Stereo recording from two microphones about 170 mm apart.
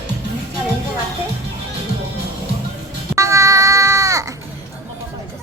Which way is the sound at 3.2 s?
20° right (ahead or behind).